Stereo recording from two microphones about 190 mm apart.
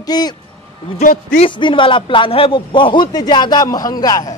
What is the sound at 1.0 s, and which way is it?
Speech, 45° left (ahead or behind).